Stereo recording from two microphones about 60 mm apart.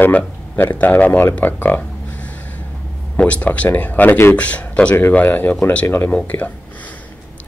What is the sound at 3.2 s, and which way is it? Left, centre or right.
Speech, left.